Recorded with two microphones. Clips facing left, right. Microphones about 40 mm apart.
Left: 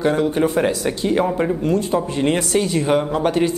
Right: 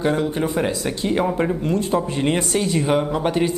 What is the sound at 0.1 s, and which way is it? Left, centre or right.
Speech, centre.